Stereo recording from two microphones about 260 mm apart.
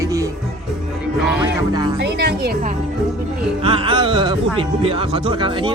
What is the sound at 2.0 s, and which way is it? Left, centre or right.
Speech, right.